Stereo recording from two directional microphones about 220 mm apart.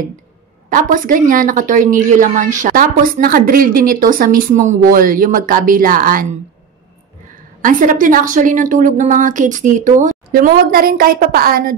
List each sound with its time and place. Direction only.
0.7 s a woman's voice: 40° right (ahead or behind)
7.6 s a woman's voice: 40° right (ahead or behind)